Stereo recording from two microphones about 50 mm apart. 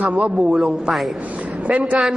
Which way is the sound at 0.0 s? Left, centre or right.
Right.